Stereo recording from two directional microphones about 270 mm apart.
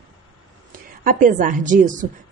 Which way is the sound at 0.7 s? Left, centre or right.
Right.